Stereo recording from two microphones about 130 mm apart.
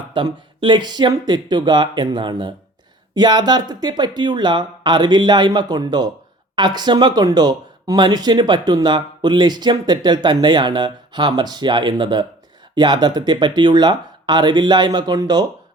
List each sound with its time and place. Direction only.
0.1 s speech: 35° right (ahead or behind)